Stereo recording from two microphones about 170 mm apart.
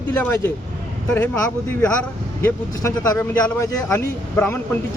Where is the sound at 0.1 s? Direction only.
10° left (ahead or behind).